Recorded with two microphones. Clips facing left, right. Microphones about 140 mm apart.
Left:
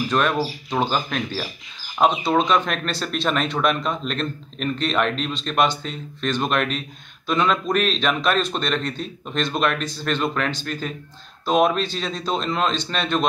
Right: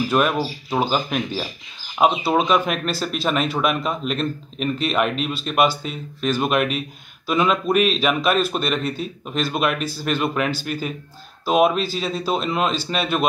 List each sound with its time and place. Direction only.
0.1 s a man's voice: 5° right (ahead or behind)